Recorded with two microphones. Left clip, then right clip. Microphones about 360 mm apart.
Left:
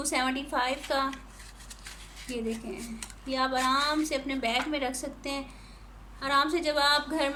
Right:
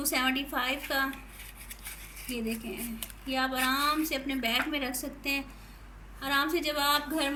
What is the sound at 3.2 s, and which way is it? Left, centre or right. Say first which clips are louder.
Speech: left 2 dB; centre.